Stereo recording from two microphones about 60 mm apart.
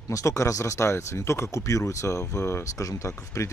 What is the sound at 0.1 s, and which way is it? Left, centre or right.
Speech, left.